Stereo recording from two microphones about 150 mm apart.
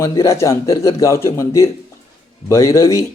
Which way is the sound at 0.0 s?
20° left (ahead or behind).